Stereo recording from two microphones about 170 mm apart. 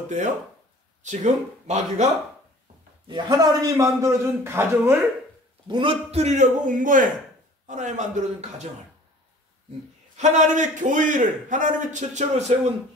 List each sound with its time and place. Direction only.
1.0 s a man's voice: 45° right (ahead or behind)
3.1 s a man's voice: 25° right (ahead or behind)
5.7 s a man's voice: 30° right (ahead or behind)
10.1 s a man's voice: 45° right (ahead or behind)